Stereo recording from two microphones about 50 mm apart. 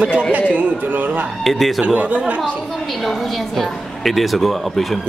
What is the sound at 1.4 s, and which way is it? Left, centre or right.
Speech, centre.